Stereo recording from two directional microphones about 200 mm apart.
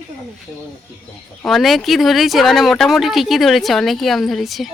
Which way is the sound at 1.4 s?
Centre (ahead or behind).